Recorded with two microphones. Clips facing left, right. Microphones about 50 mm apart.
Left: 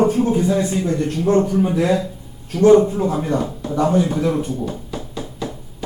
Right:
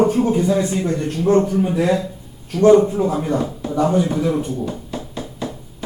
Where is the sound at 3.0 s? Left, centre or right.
Centre.